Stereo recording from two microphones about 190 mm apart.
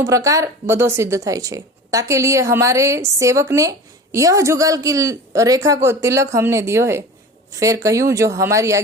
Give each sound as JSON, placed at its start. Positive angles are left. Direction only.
{"t": 0.0, "sound": "speech", "side_deg": -15}